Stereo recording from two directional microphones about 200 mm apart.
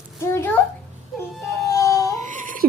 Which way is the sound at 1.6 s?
15° left (ahead or behind).